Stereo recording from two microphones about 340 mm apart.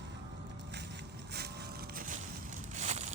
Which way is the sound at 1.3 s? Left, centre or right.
Right.